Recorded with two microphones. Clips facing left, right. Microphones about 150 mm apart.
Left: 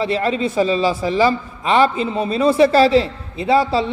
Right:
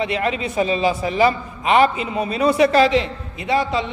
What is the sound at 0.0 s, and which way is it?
A man's voice, 35° left (ahead or behind).